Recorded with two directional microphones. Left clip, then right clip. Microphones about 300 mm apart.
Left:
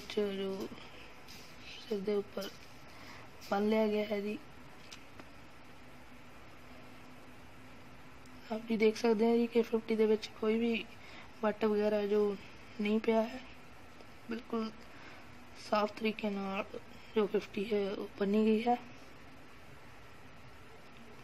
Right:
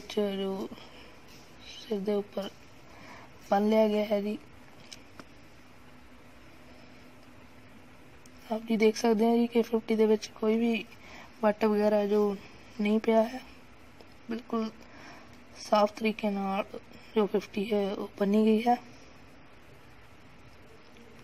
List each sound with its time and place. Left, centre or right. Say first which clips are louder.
0.1 s speech: right 4 dB; centre
1.7 s a woman's voice: right 4 dB; centre
3.4 s speech: right 7 dB; centre
8.5 s speech: right 5 dB; right
15.7 s speech: right 7 dB; right